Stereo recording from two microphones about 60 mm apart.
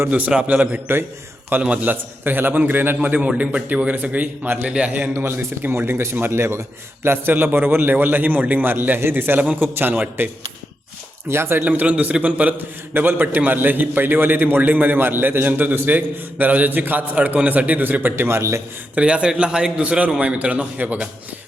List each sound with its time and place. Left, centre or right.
0.1 s a man's voice: right
1.8 s a man's voice: right
5.1 s a man's voice: right
11.3 s a man's voice: right
11.6 s a man's voice: right
18.3 s speech: right
18.9 s a man's voice: centre